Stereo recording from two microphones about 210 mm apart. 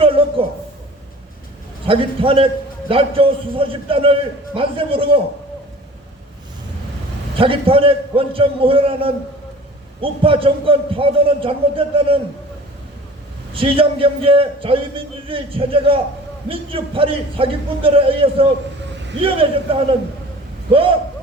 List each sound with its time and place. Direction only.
0.0 s a sound: 25° right (ahead or behind)
1.9 s a man's voice: 25° right (ahead or behind)
7.3 s a man's voice: 25° right (ahead or behind)
13.5 s a man's voice: 25° right (ahead or behind)
19.7 s a man's voice: 25° right (ahead or behind)